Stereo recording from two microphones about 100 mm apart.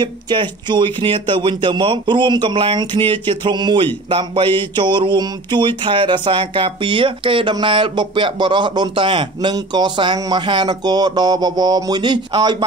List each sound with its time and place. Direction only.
0.0 s speech: 50° right (ahead or behind)